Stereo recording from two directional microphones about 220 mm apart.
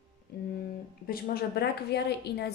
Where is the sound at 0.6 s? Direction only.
40° left (ahead or behind).